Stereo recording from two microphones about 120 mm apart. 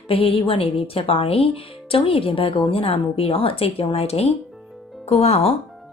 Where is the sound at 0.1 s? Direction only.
50° left (ahead or behind).